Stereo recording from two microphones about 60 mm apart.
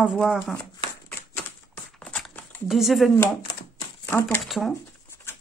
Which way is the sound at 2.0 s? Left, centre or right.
Left.